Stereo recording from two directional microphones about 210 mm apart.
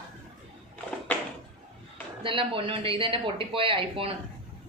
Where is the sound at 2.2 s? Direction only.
25° right (ahead or behind).